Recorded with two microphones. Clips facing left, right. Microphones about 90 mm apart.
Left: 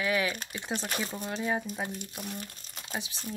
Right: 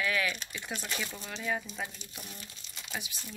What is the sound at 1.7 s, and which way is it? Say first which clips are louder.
Speech: left 5 dB; 55° left (ahead or behind).